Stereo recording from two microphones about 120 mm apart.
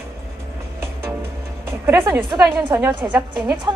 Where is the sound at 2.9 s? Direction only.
40° right (ahead or behind).